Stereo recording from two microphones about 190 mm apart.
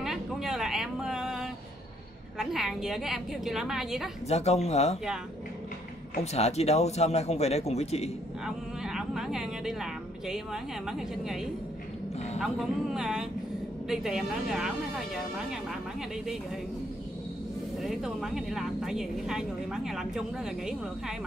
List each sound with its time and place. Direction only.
0.0 s a sound: centre (ahead or behind)
2.3 s speech: centre (ahead or behind)
4.3 s a man's voice: 35° left (ahead or behind)
6.3 s a man's voice: 35° left (ahead or behind)
8.5 s a woman's voice: centre (ahead or behind)
17.8 s speech: centre (ahead or behind)